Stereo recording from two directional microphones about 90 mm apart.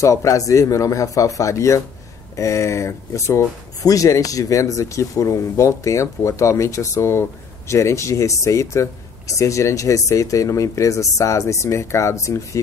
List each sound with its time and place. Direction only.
0.0 s speech: 35° left (ahead or behind)